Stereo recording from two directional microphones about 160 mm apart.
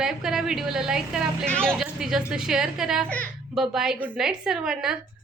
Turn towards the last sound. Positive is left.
turn(degrees=-5)  # may be behind; listen again after turning